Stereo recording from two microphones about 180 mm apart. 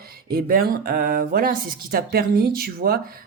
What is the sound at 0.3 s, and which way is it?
Speech, 55° right (ahead or behind).